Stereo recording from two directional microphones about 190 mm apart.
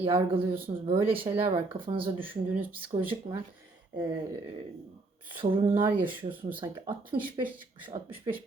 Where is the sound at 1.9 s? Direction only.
30° right (ahead or behind).